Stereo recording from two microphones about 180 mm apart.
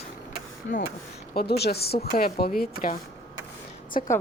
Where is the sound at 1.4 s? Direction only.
65° left (ahead or behind).